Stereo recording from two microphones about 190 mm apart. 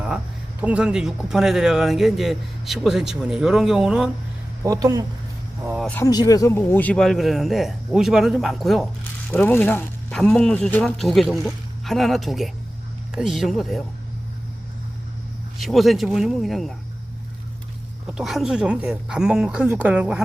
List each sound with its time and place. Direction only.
0.6 s speech: 5° right (ahead or behind)
4.6 s speech: 20° right (ahead or behind)
5.8 s speech: 10° left (ahead or behind)
6.1 s speech: 20° left (ahead or behind); by 8.9 s centre (ahead or behind)
9.3 s speech: 10° left (ahead or behind)
15.5 s speech: centre (ahead or behind)
18.0 s speech: centre (ahead or behind)